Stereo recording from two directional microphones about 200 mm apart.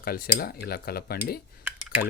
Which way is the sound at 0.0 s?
50° left (ahead or behind).